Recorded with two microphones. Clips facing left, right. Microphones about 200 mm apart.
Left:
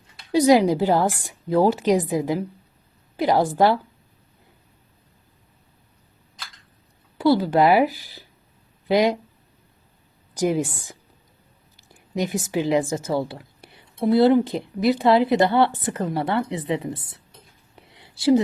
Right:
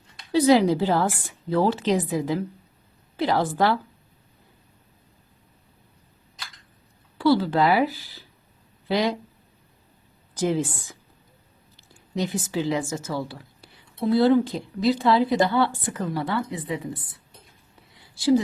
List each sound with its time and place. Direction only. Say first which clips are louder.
0.3 s a woman's voice: left 2 dB; 15° left (ahead or behind)
7.2 s a woman's voice: left 2 dB; 15° left (ahead or behind)
10.4 s a woman's voice: left 2 dB; 15° left (ahead or behind)
11.8 s a sound: left 2 dB; 15° left (ahead or behind)
12.5 s a woman's voice: left 4 dB; 15° left (ahead or behind)
17.7 s a sound: left 6 dB; 75° left (ahead or behind)